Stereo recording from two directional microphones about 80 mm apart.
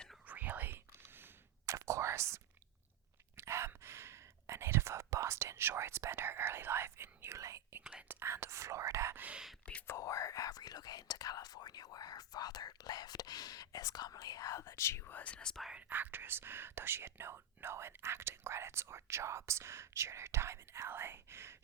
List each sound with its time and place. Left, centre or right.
0.3 s whispering: right
1.6 s whispering: right
9.1 s whispering: centre
9.8 s whispering: left
14.6 s whispering: left
15.2 s whispering: centre
15.7 s whispering: right